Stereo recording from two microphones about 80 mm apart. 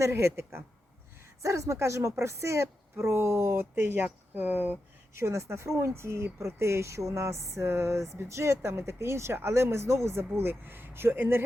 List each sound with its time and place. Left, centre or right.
0.0 s speech: right
5.2 s speech: right